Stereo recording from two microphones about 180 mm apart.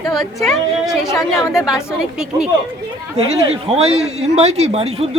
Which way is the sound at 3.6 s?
35° right (ahead or behind).